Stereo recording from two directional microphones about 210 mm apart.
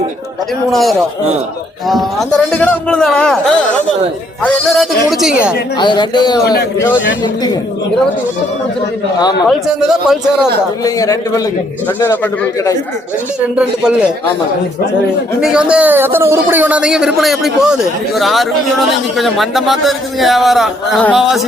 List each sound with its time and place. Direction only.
0.7 s a man's voice: centre (ahead or behind)
4.4 s a man's voice: centre (ahead or behind)
5.7 s speech: 20° left (ahead or behind)
6.4 s a man's voice: 50° left (ahead or behind)
9.5 s a man's voice: centre (ahead or behind)
10.8 s speech: 15° left (ahead or behind)
13.6 s a man's voice: 5° right (ahead or behind)
15.4 s a man's voice: 5° right (ahead or behind)